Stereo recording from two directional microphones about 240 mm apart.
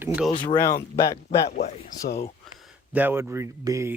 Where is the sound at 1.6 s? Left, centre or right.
Left.